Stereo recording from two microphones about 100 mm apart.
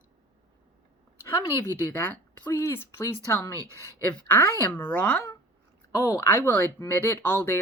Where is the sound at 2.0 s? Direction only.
20° left (ahead or behind).